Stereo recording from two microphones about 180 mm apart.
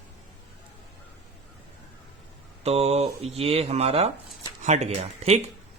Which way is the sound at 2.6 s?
35° right (ahead or behind).